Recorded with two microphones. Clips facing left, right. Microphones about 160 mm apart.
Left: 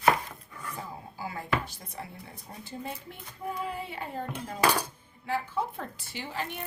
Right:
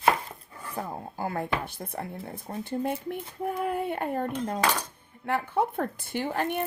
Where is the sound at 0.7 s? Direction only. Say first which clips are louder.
Right 8 dB; 55° right (ahead or behind).